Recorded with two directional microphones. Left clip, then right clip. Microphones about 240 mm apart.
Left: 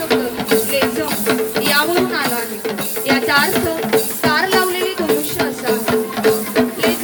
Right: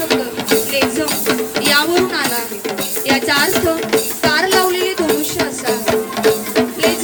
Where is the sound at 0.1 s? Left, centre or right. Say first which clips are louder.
Left 1 dB; right.